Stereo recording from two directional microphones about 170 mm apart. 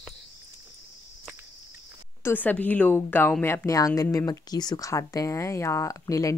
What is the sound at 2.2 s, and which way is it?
Speech, 10° left (ahead or behind).